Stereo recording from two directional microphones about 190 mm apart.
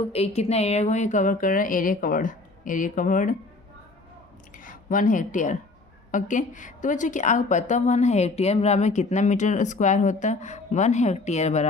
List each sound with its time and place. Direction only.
0.0 s speech: 30° left (ahead or behind)
4.5 s a woman's voice: 45° left (ahead or behind)